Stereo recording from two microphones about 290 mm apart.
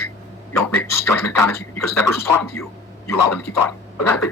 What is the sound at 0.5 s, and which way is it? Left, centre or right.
Speech, centre.